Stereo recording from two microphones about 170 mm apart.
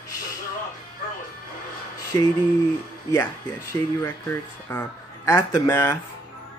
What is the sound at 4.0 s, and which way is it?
Speech, 15° left (ahead or behind).